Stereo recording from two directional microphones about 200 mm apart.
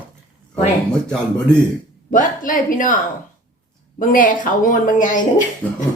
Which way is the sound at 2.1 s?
40° left (ahead or behind).